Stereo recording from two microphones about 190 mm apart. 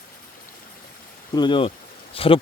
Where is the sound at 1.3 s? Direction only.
25° left (ahead or behind).